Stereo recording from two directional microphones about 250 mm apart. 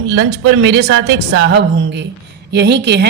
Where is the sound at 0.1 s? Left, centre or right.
Right.